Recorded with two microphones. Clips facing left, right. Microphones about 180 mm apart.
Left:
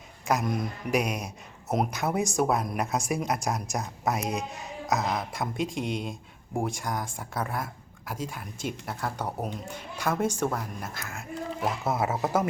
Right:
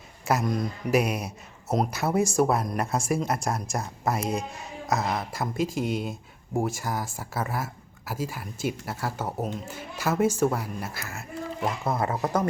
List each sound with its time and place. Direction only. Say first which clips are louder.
0.3 s speech: right 2 dB; centre (ahead or behind)